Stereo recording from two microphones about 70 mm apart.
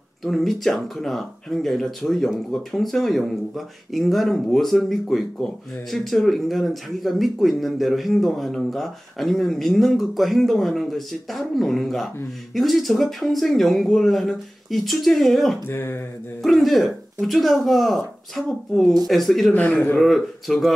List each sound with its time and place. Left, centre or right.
0.2 s speech: centre
15.6 s speech: left
16.4 s speech: centre
19.5 s a man's voice: left
20.0 s speech: centre